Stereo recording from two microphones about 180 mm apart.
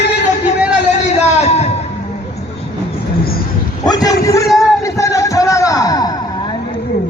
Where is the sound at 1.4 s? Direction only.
40° left (ahead or behind).